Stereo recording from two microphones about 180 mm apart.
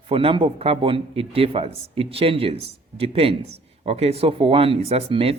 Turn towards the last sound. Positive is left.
turn(degrees=-30)  # may be behind; listen again after turning